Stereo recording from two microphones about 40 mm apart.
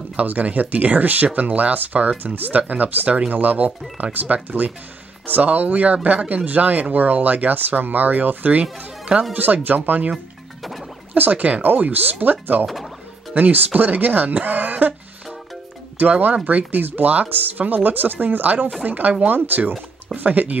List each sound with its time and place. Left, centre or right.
0.1 s speech: right
8.7 s speech: right
9.3 s speech: right
10.6 s music: centre
11.1 s speech: right
11.6 s speech: right
12.6 s speech: centre
13.3 s speech: right
16.0 s speech: right